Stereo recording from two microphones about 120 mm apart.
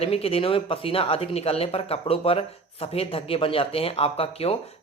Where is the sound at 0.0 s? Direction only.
55° left (ahead or behind).